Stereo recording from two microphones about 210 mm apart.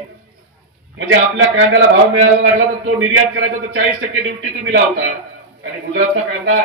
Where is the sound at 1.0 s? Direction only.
55° right (ahead or behind).